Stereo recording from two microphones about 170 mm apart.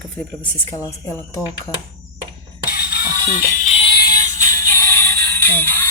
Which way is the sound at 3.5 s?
40° left (ahead or behind).